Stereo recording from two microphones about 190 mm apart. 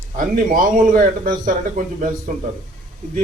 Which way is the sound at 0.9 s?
45° right (ahead or behind).